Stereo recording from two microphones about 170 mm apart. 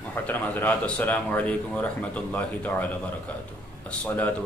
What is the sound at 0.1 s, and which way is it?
Speech, 10° left (ahead or behind).